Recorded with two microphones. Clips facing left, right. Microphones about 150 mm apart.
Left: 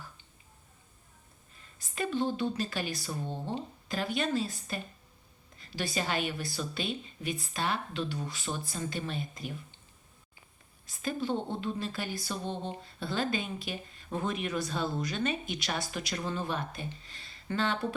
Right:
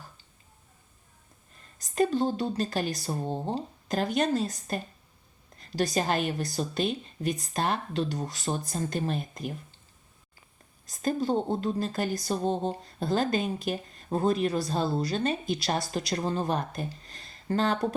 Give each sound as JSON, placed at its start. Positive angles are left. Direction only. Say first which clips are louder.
{"t": 1.8, "sound": "a woman's voice", "louder": "right 6 dB", "side_deg": -40}
{"t": 10.8, "sound": "a woman's voice", "louder": "right 5 dB", "side_deg": -40}